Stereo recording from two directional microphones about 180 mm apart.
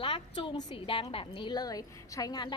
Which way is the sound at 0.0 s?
25° left (ahead or behind).